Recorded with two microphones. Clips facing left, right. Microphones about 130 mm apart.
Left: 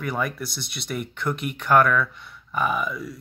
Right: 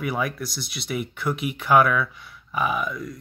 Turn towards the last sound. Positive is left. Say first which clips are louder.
# even
turn(degrees=5)  # may be behind; listen again after turning